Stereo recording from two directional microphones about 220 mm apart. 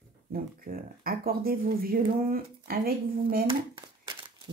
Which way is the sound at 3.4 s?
20° right (ahead or behind).